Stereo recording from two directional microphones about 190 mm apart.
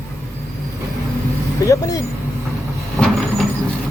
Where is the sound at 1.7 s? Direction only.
20° left (ahead or behind).